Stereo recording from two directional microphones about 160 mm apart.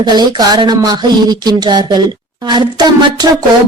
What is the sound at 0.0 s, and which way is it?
Speech, 25° right (ahead or behind).